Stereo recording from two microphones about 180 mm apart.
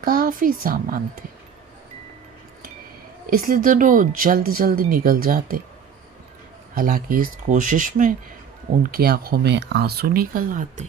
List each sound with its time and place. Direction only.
0.0 s a woman's voice: 50° right (ahead or behind)
3.2 s speech: 50° right (ahead or behind)
6.7 s speech: 50° right (ahead or behind)